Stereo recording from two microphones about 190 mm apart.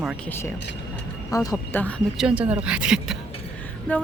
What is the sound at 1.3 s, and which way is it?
Speech, 20° left (ahead or behind).